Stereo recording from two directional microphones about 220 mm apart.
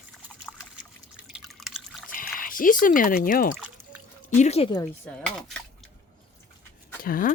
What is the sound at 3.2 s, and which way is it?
Speech, 40° left (ahead or behind).